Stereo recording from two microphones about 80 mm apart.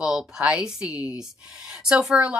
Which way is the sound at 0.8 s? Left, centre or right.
Left.